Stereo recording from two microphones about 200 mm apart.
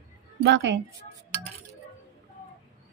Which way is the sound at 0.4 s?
60° right (ahead or behind).